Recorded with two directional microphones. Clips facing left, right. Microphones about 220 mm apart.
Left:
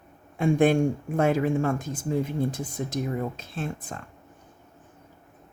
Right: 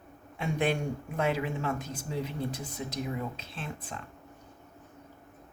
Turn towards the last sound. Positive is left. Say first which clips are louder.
# left 7 dB
turn(degrees=45)  # may be behind; listen again after turning